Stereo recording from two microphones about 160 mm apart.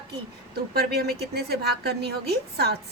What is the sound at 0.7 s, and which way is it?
A woman's voice, 85° right.